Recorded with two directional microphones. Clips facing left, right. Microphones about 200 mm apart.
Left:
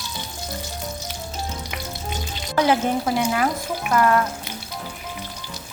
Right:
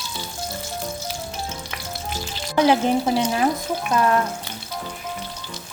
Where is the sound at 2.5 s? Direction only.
20° right (ahead or behind).